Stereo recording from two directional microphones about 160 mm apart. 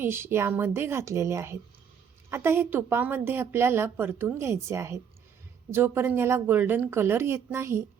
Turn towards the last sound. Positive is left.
turn(degrees=-15)  # may be behind; listen again after turning